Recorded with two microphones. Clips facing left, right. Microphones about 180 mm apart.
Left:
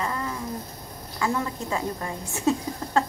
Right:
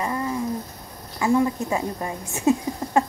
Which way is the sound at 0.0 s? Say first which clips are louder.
Right 3 dB; 20° right (ahead or behind).